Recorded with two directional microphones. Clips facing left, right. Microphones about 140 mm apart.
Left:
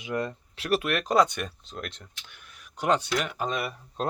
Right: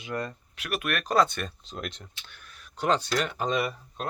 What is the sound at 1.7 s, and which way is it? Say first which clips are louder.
Speech: right 1 dB; centre (ahead or behind).